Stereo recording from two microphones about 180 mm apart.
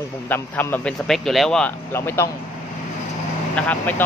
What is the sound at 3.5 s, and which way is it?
Speech, 10° left (ahead or behind).